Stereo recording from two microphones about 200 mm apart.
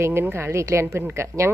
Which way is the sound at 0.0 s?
10° right (ahead or behind).